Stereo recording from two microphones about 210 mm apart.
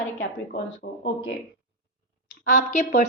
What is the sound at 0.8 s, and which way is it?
Speech, 50° left (ahead or behind).